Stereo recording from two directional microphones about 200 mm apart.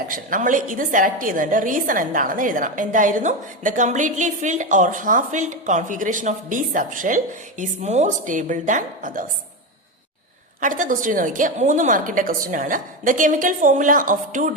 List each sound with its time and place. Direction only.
0.1 s a woman's voice: 40° right (ahead or behind)
10.6 s a woman's voice: 40° right (ahead or behind)